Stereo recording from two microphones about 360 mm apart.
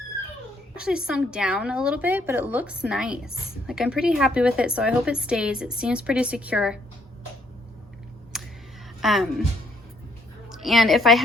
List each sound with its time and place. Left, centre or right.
0.8 s a woman's voice: centre
8.3 s a sound: centre
9.0 s speech: centre
10.5 s a woman's voice: centre